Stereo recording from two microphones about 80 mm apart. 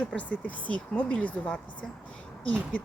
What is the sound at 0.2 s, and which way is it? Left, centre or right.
A woman's voice, centre.